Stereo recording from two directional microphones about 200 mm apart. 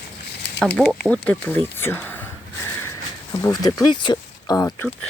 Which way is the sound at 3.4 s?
20° left (ahead or behind).